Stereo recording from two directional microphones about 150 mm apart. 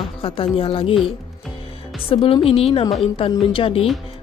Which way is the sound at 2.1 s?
40° left (ahead or behind).